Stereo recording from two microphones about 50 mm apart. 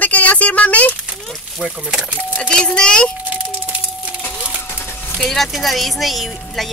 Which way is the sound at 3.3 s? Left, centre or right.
Right.